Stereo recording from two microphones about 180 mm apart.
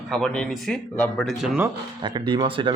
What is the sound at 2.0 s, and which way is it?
Speech, 25° right (ahead or behind).